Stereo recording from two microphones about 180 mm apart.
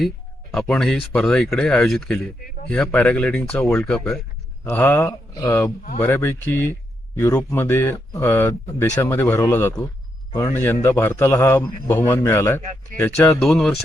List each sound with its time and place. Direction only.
0.5 s a man's voice: 5° left (ahead or behind)
13.4 s speech: centre (ahead or behind)